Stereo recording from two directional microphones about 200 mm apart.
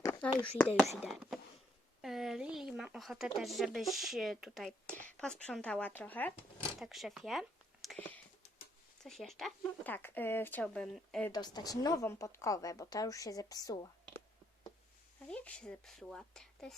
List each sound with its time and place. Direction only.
0.0 s a sound: 10° left (ahead or behind)
0.9 s speech: centre (ahead or behind)
6.7 s a sound: centre (ahead or behind)
9.0 s speech: centre (ahead or behind)
11.3 s speech: 20° left (ahead or behind)
15.3 s speech: 5° left (ahead or behind)